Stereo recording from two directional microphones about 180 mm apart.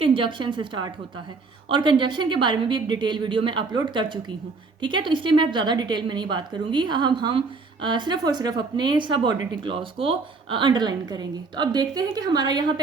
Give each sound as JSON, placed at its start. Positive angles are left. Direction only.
{"t": 0.0, "sound": "a woman's voice", "side_deg": -30}